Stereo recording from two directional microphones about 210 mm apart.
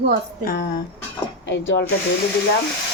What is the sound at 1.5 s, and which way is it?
Speech, 55° left (ahead or behind).